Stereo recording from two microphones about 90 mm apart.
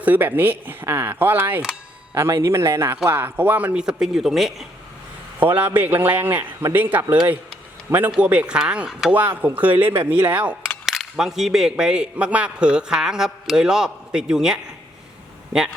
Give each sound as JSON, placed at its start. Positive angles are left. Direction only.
{"t": 0.0, "sound": "a man's voice", "side_deg": -20}
{"t": 5.4, "sound": "a man's voice", "side_deg": -20}
{"t": 10.8, "sound": "a man's voice", "side_deg": -5}